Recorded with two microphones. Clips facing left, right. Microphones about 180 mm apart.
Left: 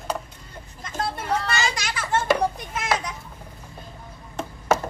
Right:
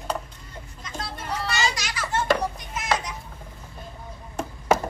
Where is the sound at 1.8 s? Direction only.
55° left (ahead or behind).